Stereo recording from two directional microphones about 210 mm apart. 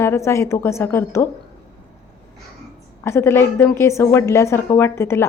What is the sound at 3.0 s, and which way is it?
Speech, 10° left (ahead or behind).